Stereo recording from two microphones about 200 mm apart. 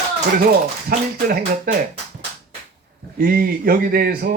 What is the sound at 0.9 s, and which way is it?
Speech, 50° right (ahead or behind).